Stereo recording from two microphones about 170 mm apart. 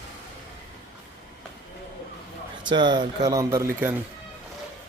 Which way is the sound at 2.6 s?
25° right (ahead or behind).